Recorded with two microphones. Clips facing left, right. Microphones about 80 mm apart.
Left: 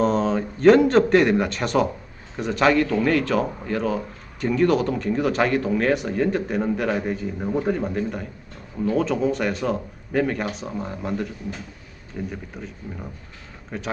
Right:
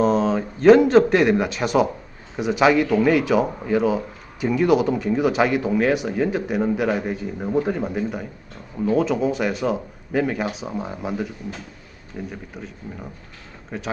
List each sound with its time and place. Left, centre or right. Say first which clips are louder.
0.0 s a man's voice: right 2 dB; centre
12.3 s a man's voice: even; centre